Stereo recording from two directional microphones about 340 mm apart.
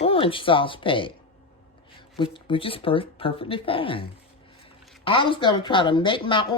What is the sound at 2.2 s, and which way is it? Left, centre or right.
Speech, centre.